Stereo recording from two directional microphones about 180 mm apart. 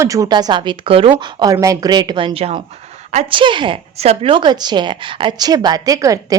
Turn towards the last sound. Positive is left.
turn(degrees=-20)  # may be behind; listen again after turning